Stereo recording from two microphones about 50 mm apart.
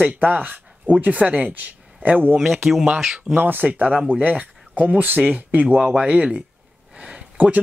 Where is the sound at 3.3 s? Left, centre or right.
Right.